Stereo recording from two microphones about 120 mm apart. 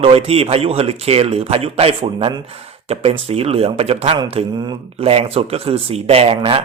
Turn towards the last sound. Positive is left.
turn(degrees=-55)  # may be behind; listen again after turning